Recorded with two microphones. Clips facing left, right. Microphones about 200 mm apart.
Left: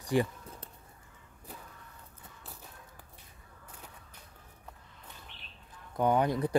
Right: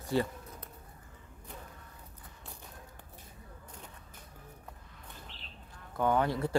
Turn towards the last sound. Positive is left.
turn(degrees=20)  # may be behind; listen again after turning